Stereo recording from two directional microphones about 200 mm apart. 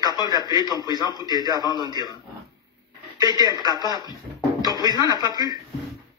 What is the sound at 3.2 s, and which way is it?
A man's voice, 20° right (ahead or behind).